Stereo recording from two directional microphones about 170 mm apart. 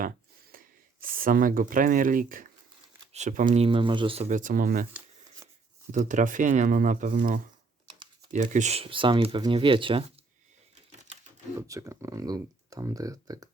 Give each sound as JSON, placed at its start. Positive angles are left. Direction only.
{"t": 1.0, "sound": "speech", "side_deg": -55}
{"t": 4.3, "sound": "speech", "side_deg": -50}
{"t": 5.9, "sound": "speech", "side_deg": -45}
{"t": 10.9, "sound": "a sound", "side_deg": -45}
{"t": 11.5, "sound": "speech", "side_deg": -20}